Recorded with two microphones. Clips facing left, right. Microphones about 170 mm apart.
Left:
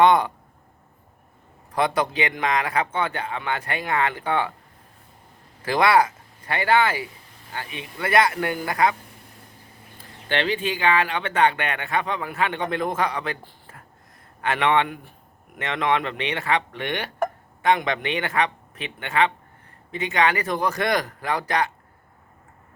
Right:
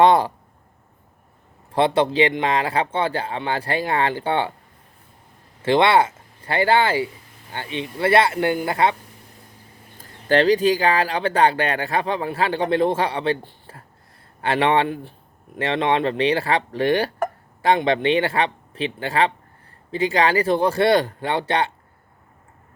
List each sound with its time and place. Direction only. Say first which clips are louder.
0.0 s speech: right 2 dB; 30° right (ahead or behind)
1.7 s speech: right 5 dB; 30° right (ahead or behind)
5.6 s a man's voice: right 2 dB; 25° right (ahead or behind)
10.0 s a man's voice: right 8 dB; 40° right (ahead or behind)